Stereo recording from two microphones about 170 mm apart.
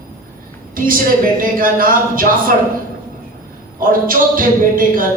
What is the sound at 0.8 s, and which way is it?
Speech, 55° right (ahead or behind).